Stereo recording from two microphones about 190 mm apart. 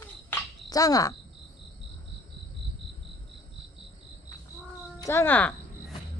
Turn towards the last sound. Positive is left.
turn(degrees=10)  # may be behind; listen again after turning